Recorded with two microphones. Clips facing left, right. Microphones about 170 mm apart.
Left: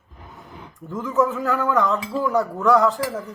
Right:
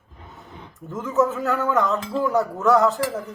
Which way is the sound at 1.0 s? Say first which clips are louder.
Even; 5° right (ahead or behind).